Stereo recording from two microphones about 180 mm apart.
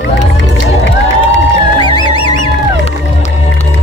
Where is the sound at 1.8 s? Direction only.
25° left (ahead or behind).